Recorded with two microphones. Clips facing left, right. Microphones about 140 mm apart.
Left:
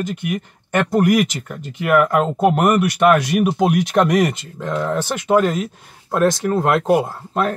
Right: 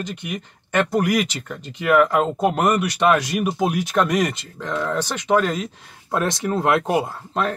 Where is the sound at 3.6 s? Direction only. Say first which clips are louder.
Left 2 dB; 65° left (ahead or behind).